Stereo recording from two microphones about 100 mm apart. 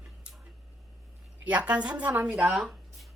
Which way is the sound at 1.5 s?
15° right (ahead or behind).